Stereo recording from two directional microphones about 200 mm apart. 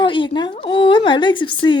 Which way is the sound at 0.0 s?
25° left (ahead or behind).